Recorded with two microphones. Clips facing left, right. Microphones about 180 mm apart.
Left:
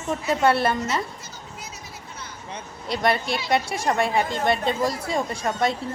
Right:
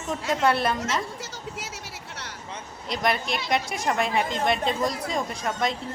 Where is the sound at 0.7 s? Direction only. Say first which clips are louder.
Left 2 dB; 90° right.